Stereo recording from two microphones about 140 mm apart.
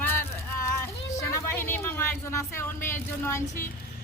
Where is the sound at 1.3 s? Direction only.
15° left (ahead or behind).